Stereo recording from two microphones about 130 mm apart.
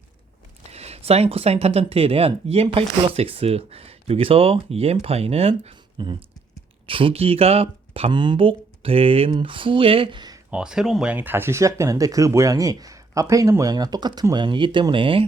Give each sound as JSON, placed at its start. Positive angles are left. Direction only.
{"t": 0.6, "sound": "speech", "side_deg": -55}
{"t": 8.1, "sound": "speech", "side_deg": -35}
{"t": 10.5, "sound": "speech", "side_deg": -5}